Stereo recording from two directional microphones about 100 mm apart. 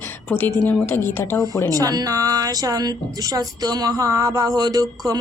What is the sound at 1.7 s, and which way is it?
A woman's voice, 40° right (ahead or behind).